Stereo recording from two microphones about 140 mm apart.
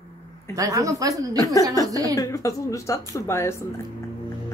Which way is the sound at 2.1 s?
25° left (ahead or behind).